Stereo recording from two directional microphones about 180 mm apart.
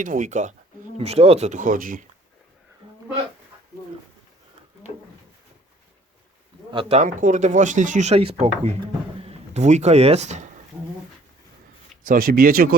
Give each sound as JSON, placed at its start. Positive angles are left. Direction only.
{"t": 0.0, "sound": "speech", "side_deg": -45}
{"t": 6.7, "sound": "speech", "side_deg": -30}
{"t": 12.0, "sound": "speech", "side_deg": -50}